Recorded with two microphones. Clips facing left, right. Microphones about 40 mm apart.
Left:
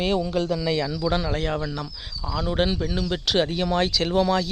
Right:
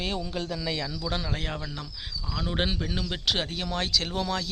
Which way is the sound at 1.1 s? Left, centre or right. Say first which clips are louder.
Left 5 dB; left.